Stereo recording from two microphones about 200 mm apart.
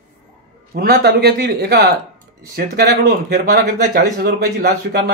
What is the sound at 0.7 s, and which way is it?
Speech, 55° right (ahead or behind).